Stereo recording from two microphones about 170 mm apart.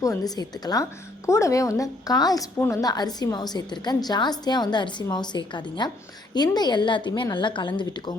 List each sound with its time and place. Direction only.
0.0 s a woman's voice: 20° left (ahead or behind)